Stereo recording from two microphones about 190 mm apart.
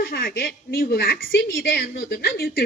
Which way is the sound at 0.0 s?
55° left (ahead or behind).